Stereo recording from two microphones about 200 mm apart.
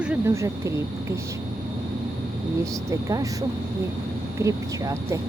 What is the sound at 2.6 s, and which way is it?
Speech, 15° right (ahead or behind).